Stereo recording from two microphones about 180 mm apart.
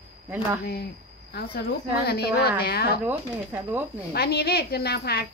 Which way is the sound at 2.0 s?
60° left (ahead or behind).